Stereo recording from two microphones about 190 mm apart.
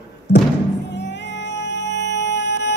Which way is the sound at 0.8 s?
65° left (ahead or behind).